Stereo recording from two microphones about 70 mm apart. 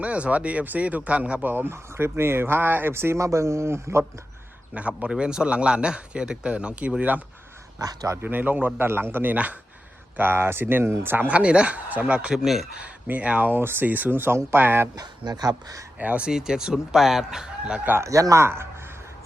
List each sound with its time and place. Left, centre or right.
0.0 s speech: centre; by 4.0 s right
4.7 s a man's voice: centre
7.8 s speech: right
8.1 s speech: right
11.3 s a man's voice: centre
12.8 s speech: centre
14.9 s speech: right
16.0 s speech: centre
16.3 s a man's voice: centre
18.0 s speech: right